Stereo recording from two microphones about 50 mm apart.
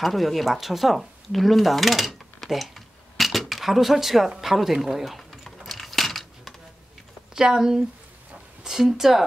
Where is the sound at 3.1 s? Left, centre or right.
Centre.